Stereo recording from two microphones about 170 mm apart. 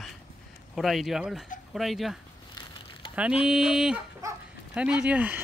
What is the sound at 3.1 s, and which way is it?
Fowl, 5° right (ahead or behind).